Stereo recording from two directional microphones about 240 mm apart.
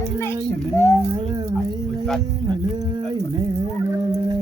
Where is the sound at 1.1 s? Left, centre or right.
Centre.